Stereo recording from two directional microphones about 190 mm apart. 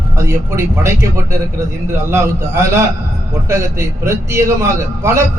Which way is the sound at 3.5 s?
15° right (ahead or behind).